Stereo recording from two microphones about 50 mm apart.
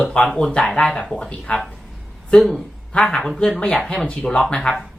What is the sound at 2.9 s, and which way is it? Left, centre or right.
Speech, centre.